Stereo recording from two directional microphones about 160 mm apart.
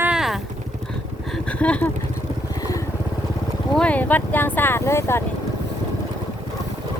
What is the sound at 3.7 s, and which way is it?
Speech, 10° left (ahead or behind).